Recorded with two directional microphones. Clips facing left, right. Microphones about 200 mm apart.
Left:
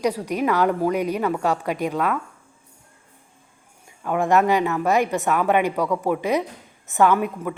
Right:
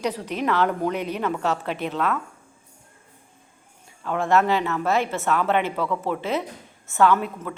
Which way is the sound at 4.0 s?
15° left (ahead or behind).